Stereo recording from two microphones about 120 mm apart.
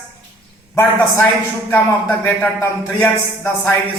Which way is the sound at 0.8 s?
15° left (ahead or behind).